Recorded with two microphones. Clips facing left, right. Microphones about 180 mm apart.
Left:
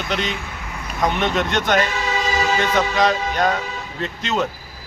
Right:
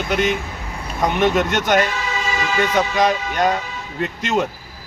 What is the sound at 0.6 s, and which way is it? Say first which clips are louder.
Vehicle: right 2 dB; 30° right (ahead or behind).